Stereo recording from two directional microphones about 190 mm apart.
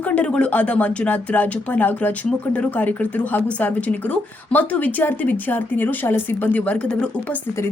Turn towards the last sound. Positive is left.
turn(degrees=5)  # may be behind; listen again after turning